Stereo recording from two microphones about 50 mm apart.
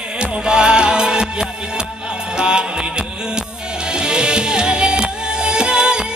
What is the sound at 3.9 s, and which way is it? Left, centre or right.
Music, centre.